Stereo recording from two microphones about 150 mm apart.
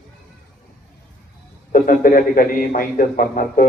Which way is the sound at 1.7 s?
65° left (ahead or behind).